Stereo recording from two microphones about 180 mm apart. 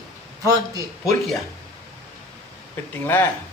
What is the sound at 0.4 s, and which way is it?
Speech, 20° right (ahead or behind).